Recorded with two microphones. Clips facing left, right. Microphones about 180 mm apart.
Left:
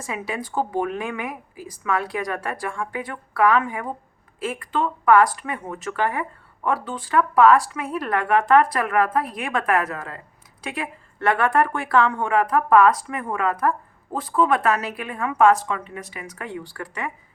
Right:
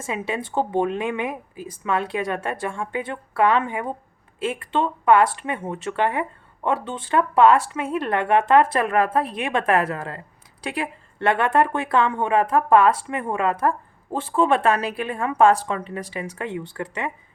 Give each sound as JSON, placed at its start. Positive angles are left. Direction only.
{"t": 0.0, "sound": "speech", "side_deg": -25}